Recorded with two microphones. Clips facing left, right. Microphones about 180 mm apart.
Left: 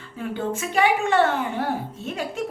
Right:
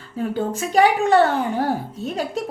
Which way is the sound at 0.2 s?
35° right (ahead or behind).